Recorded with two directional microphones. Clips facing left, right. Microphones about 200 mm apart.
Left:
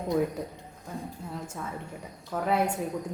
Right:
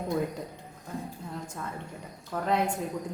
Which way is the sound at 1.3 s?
5° left (ahead or behind).